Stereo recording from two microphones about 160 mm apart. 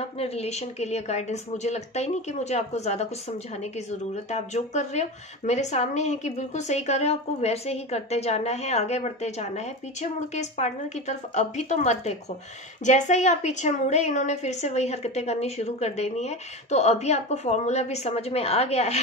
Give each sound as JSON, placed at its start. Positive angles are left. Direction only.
{"t": 0.0, "sound": "a woman's voice", "side_deg": 40}